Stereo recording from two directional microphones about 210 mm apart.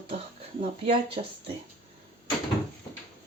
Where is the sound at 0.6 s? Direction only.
25° right (ahead or behind).